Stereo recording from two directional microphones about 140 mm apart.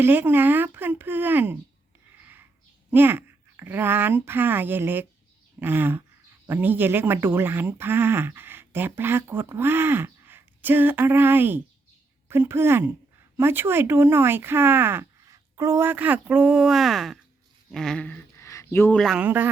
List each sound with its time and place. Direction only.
0.0 s speech: 15° right (ahead or behind)
2.9 s speech: 15° right (ahead or behind)
17.7 s a sound: 5° left (ahead or behind)
18.9 s speech: centre (ahead or behind)
19.2 s speech: 15° right (ahead or behind)